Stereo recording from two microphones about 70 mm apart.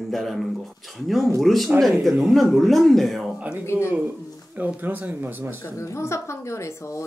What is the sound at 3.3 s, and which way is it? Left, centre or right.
Speech, centre.